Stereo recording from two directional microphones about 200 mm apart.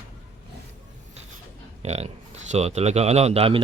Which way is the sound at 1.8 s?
30° right (ahead or behind).